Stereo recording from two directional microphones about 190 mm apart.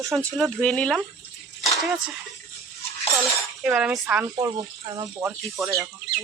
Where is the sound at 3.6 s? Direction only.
Centre (ahead or behind).